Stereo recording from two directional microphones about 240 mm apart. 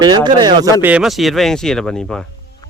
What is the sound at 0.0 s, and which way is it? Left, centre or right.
Speech, centre.